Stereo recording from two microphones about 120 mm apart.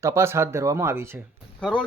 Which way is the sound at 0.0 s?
25° right (ahead or behind).